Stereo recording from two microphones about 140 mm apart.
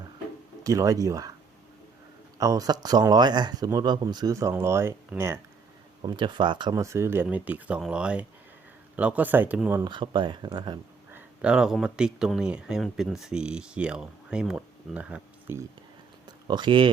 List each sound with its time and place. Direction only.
0.6 s speech: 25° right (ahead or behind)
2.4 s speech: 25° right (ahead or behind)
6.0 s speech: 35° right (ahead or behind)
6.8 s speech: 20° right (ahead or behind)
9.8 s speech: 35° right (ahead or behind)
11.1 s speech: 5° right (ahead or behind)
16.5 s speech: 35° right (ahead or behind)